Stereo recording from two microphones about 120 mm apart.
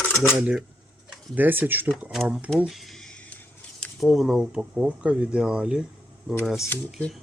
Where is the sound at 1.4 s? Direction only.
15° right (ahead or behind).